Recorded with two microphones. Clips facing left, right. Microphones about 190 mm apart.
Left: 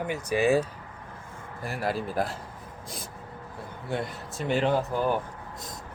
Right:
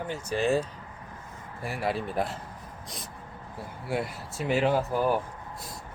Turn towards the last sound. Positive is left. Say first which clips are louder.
# even
turn(degrees=-5)  # may be behind; listen again after turning